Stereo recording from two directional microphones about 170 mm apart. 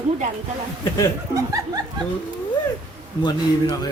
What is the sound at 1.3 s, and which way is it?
Speech, 20° right (ahead or behind).